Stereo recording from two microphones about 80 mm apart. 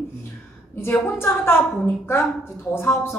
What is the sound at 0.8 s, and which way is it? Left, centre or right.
A woman's voice, left.